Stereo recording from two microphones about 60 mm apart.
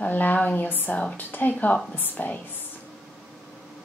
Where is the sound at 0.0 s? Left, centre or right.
Left.